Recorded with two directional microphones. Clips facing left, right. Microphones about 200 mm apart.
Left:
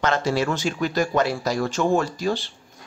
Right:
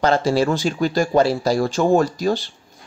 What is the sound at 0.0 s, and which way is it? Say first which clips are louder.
Speech: right 5 dB; 35° right (ahead or behind).